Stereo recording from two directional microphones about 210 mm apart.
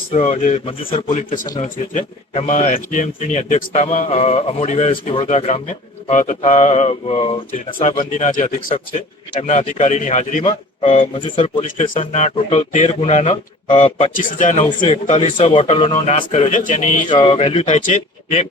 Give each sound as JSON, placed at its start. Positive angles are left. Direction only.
{"t": 0.1, "sound": "a man's voice", "side_deg": 35}
{"t": 1.5, "sound": "a man's voice", "side_deg": 20}
{"t": 1.9, "sound": "a man's voice", "side_deg": 35}
{"t": 7.9, "sound": "a man's voice", "side_deg": 40}
{"t": 17.1, "sound": "a man's voice", "side_deg": 25}